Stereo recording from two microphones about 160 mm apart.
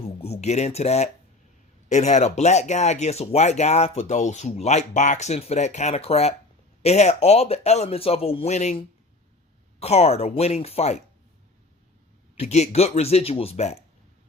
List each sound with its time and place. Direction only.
0.2 s speech: 40° left (ahead or behind)
9.8 s speech: 40° left (ahead or behind)
12.4 s speech: 40° left (ahead or behind)